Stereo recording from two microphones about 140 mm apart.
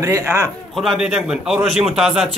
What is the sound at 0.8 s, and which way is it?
Speech, centre (ahead or behind).